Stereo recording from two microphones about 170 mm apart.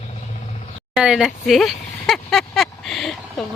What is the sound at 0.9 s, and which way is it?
Speech, 5° right (ahead or behind).